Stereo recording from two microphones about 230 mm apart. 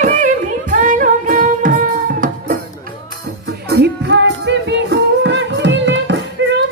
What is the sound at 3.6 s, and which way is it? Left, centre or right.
Music, right.